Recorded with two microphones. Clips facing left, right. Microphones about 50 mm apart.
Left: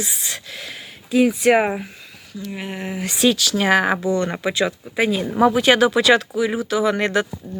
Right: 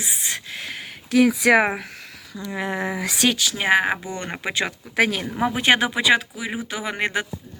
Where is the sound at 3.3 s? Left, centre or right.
Right.